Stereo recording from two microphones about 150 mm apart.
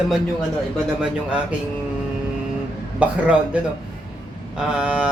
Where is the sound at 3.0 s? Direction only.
10° right (ahead or behind).